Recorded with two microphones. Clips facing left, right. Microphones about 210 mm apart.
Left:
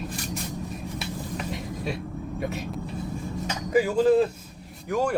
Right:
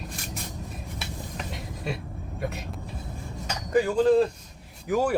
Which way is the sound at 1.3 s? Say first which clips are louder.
Left 5 dB; centre (ahead or behind).